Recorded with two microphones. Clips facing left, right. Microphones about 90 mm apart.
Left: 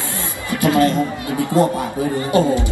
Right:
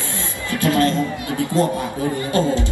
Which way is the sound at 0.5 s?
15° left (ahead or behind).